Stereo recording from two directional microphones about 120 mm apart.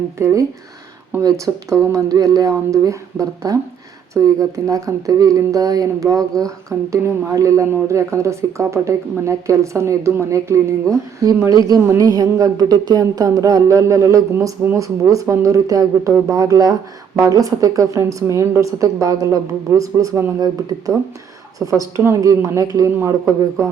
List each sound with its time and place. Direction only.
0.2 s speech: 25° right (ahead or behind)
1.5 s speech: 20° right (ahead or behind)